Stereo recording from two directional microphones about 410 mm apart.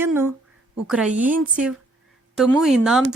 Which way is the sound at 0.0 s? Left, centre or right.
Centre.